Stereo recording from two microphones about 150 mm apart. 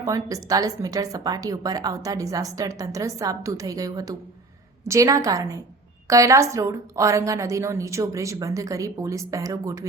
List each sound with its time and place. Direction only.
0.0 s a woman's voice: 20° right (ahead or behind)